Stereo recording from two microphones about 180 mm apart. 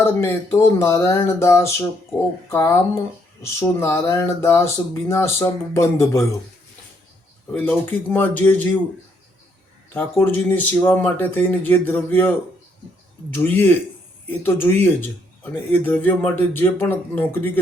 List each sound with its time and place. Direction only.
0.0 s speech: 15° left (ahead or behind)
7.5 s speech: 10° left (ahead or behind)
9.9 s speech: 10° left (ahead or behind)
13.3 s speech: 10° left (ahead or behind)
15.7 s speech: 10° left (ahead or behind)